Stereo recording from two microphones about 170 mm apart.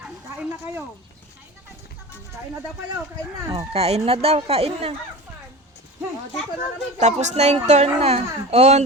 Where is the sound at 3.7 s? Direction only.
35° right (ahead or behind).